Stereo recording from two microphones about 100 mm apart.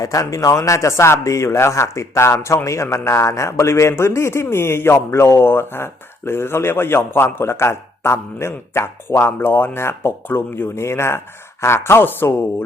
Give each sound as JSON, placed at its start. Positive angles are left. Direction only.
{"t": 0.0, "sound": "speech", "side_deg": 35}